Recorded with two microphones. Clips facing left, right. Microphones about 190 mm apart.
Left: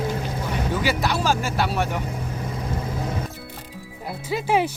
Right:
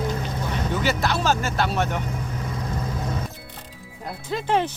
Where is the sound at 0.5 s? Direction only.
10° left (ahead or behind).